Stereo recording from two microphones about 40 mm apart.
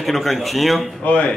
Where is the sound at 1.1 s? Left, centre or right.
Left.